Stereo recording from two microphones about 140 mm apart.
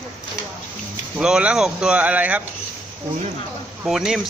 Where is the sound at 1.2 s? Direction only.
5° right (ahead or behind).